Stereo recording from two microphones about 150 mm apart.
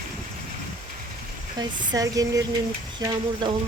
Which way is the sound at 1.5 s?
25° right (ahead or behind).